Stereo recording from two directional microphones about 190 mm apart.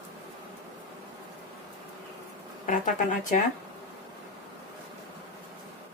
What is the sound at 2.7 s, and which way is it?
Speech, 40° left (ahead or behind).